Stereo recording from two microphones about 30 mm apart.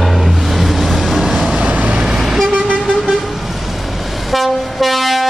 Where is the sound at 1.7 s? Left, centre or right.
Right.